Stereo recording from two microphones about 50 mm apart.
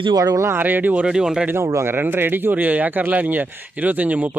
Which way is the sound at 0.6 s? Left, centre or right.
Right.